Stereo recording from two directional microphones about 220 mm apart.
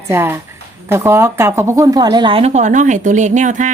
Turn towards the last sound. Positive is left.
turn(degrees=-35)  # may be behind; listen again after turning